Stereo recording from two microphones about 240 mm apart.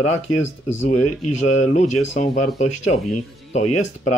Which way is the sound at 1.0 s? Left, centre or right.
Left.